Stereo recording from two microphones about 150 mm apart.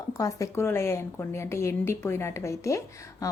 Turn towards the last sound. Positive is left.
turn(degrees=20)  # may be behind; listen again after turning